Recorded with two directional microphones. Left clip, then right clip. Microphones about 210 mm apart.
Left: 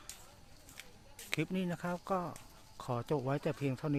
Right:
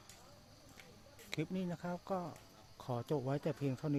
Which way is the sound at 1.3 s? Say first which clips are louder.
Left 5 dB; 25° left (ahead or behind).